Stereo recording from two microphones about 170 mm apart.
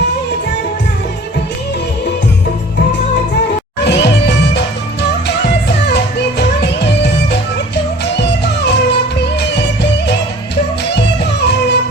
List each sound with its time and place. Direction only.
3.8 s music: 85° left